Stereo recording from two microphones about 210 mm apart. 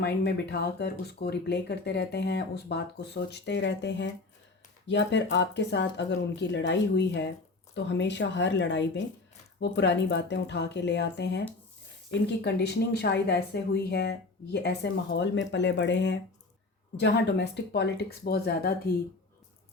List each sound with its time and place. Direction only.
0.0 s speech: 50° left (ahead or behind)